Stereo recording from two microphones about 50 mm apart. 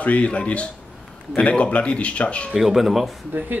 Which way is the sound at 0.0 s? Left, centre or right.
Left.